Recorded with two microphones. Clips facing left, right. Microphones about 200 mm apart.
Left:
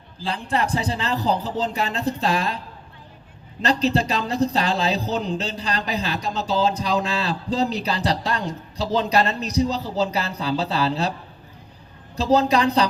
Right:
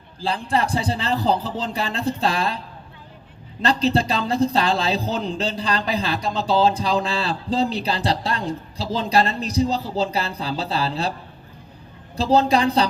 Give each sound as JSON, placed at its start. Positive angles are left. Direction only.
{"t": 0.2, "sound": "speech", "side_deg": -35}
{"t": 1.5, "sound": "speech", "side_deg": 40}
{"t": 1.7, "sound": "speech", "side_deg": -35}
{"t": 3.7, "sound": "speech", "side_deg": -35}
{"t": 12.1, "sound": "speech", "side_deg": -30}